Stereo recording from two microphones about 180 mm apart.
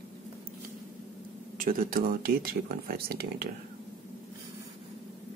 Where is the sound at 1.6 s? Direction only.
50° right (ahead or behind).